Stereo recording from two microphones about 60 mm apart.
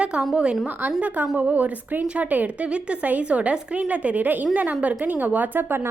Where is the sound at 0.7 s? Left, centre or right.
Right.